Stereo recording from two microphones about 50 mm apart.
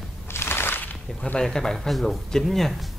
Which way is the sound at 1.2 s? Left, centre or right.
Centre.